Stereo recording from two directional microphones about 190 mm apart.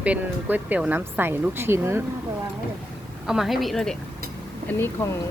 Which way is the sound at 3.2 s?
Centre (ahead or behind).